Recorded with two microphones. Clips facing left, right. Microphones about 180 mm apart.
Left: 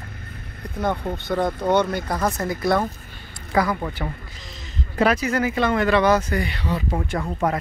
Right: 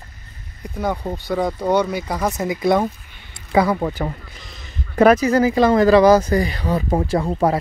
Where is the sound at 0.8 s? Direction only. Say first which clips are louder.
Right 1 dB; 10° right (ahead or behind).